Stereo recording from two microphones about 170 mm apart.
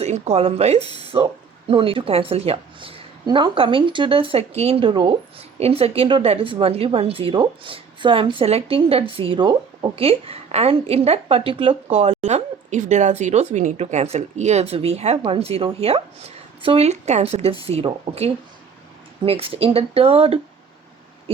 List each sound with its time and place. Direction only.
0.0 s a woman's voice: 40° right (ahead or behind)